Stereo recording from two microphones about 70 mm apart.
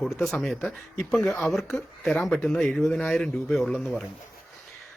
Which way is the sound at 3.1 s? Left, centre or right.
Centre.